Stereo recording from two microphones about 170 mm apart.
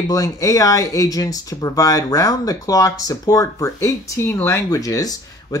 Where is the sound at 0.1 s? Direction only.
20° left (ahead or behind).